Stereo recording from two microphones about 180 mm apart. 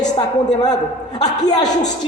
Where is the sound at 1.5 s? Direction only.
20° left (ahead or behind).